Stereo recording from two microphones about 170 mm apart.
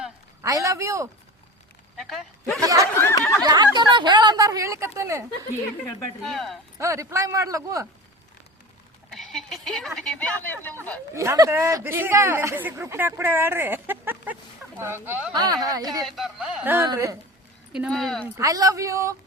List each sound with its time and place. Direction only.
0.4 s speech: 20° right (ahead or behind)
2.0 s speech: centre (ahead or behind)
2.6 s a woman's voice: 20° right (ahead or behind)
3.0 s a sound: 15° left (ahead or behind)
3.4 s a woman's voice: 25° right (ahead or behind)
6.2 s speech: centre (ahead or behind)
6.7 s a woman's voice: 20° right (ahead or behind)
9.0 s speech: centre (ahead or behind)
11.1 s speech: 15° right (ahead or behind)
15.4 s a woman's voice: 20° right (ahead or behind)
16.0 s speech: centre (ahead or behind)
16.7 s speech: 15° right (ahead or behind)
17.7 s speech: centre (ahead or behind)
18.3 s a woman's voice: 20° right (ahead or behind)